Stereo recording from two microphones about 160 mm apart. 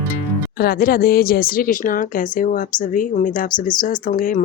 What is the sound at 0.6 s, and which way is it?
A woman's voice, 65° left (ahead or behind).